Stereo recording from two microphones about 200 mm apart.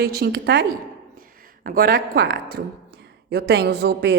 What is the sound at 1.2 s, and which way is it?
Speech, 45° right (ahead or behind).